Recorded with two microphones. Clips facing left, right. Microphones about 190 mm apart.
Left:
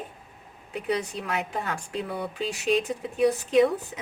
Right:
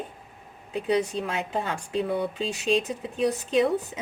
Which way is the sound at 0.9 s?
25° right (ahead or behind).